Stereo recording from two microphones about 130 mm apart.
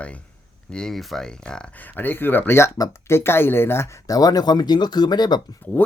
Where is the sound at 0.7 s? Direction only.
5° left (ahead or behind); by 5.4 s 35° left (ahead or behind).